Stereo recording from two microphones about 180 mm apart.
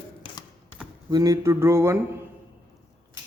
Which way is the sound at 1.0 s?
20° right (ahead or behind).